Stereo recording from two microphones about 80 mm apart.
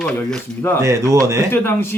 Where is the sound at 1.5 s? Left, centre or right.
Left.